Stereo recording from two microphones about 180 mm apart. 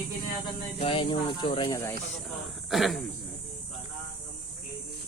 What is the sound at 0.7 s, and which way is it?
Speech, 30° left (ahead or behind).